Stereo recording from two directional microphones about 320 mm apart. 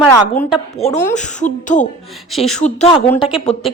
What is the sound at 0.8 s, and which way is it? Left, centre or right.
Speech, left.